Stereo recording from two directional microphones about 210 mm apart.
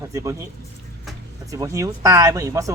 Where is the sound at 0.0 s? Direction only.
15° right (ahead or behind).